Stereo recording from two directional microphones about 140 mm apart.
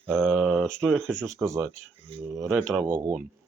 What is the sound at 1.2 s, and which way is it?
Speech, 20° right (ahead or behind).